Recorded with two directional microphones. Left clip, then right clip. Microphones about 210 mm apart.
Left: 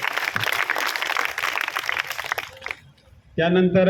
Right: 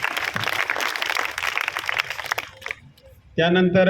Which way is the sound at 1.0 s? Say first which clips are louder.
Even; 30° right (ahead or behind).